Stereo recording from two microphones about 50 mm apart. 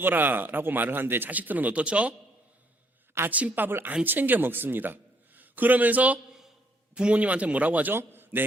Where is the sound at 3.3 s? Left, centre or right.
Right.